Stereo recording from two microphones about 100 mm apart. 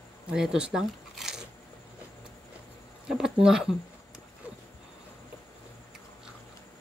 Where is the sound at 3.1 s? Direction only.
5° right (ahead or behind).